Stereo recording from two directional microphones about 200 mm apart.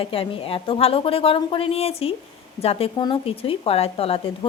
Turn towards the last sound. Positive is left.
turn(degrees=25)  # may be behind; listen again after turning